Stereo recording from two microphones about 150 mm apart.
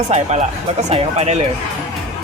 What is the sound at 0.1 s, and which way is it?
Speech, 50° right (ahead or behind).